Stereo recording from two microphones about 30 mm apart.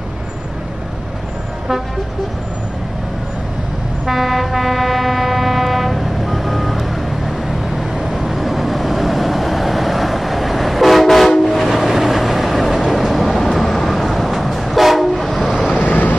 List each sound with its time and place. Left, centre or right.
4.0 s vehicle: centre
13.5 s train: centre
15.3 s vehicle: centre
15.8 s vehicle: left